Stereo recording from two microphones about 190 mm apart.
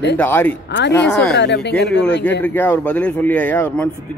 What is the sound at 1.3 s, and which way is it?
Speech, 65° left (ahead or behind).